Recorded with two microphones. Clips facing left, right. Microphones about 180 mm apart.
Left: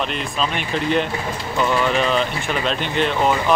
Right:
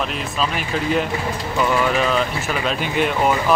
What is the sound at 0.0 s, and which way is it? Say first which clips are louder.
Speech: even; 5° right (ahead or behind).